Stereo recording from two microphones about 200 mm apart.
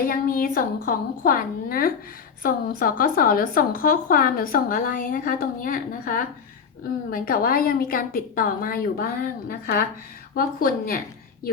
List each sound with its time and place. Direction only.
0.0 s a woman's voice: 45° left (ahead or behind)